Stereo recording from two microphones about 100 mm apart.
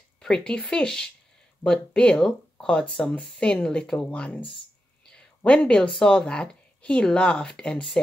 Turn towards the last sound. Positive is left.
turn(degrees=10)  # may be behind; listen again after turning